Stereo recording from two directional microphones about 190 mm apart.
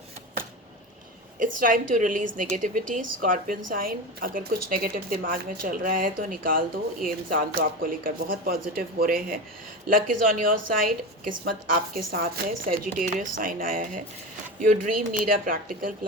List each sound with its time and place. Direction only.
1.4 s a woman's voice: 45° right (ahead or behind)
15.3 s a woman's voice: 45° right (ahead or behind)